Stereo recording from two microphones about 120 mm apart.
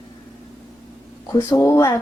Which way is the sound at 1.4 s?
20° left (ahead or behind).